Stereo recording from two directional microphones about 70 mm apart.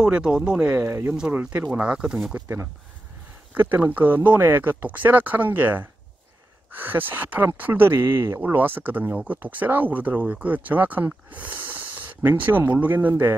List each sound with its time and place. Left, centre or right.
0.0 s speech: centre
0.8 s speech: right
1.6 s speech: centre
2.4 s speech: right
3.5 s speech: right